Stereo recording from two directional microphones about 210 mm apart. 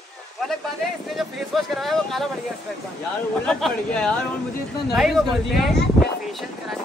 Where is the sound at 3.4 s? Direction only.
5° left (ahead or behind).